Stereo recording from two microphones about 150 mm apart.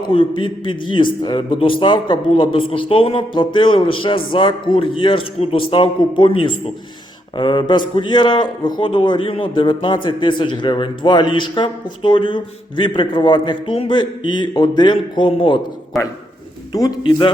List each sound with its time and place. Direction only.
0.0 s a man's voice: 35° left (ahead or behind)
16.7 s a man's voice: 30° left (ahead or behind)